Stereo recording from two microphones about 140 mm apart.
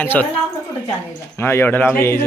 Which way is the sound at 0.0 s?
15° left (ahead or behind).